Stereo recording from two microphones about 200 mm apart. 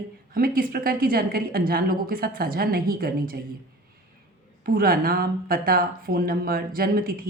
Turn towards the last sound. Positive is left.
turn(degrees=-45)  # may be behind; listen again after turning